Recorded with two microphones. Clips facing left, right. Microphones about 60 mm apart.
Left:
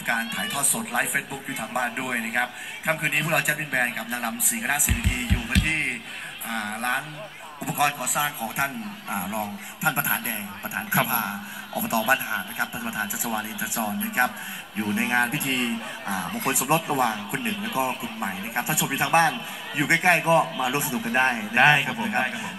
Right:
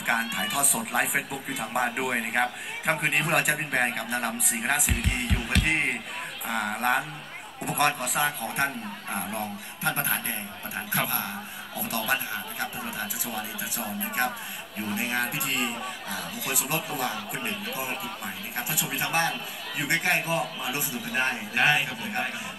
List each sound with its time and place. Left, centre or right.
0.0 s a man's voice: centre; by 15.5 s left
16.5 s a man's voice: left